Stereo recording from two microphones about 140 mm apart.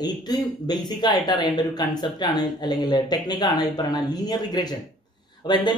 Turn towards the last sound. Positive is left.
turn(degrees=35)  # may be behind; listen again after turning